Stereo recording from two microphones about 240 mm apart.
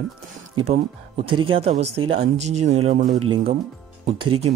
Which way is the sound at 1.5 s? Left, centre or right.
Right.